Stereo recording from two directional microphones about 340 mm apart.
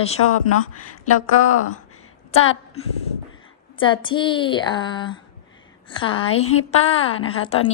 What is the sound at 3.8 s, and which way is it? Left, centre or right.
A woman's voice, centre.